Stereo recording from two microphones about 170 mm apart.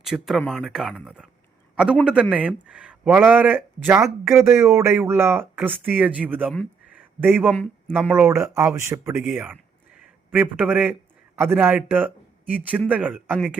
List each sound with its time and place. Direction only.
0.0 s a man's voice: centre (ahead or behind)
6.9 s a sound: 10° right (ahead or behind)
7.5 s speech: 5° left (ahead or behind)
8.1 s speech: 15° right (ahead or behind)